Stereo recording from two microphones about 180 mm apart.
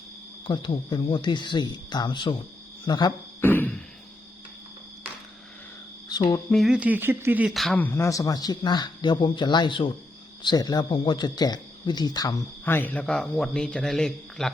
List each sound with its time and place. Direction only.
0.4 s speech: 25° left (ahead or behind)
3.4 s a sound: 10° left (ahead or behind)
6.1 s cricket: 20° left (ahead or behind)
6.5 s speech: centre (ahead or behind)